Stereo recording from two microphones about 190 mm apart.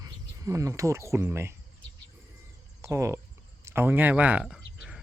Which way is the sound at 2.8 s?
15° right (ahead or behind).